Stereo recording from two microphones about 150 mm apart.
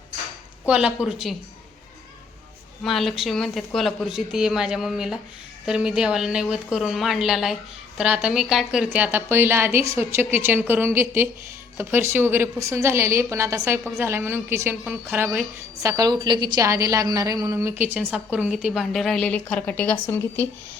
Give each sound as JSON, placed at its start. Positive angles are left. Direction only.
{"t": 0.7, "sound": "a woman's voice", "side_deg": -5}
{"t": 2.8, "sound": "a woman's voice", "side_deg": 0}